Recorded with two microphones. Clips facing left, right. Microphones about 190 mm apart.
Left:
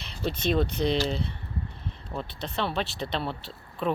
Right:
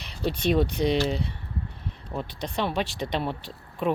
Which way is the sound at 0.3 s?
10° right (ahead or behind).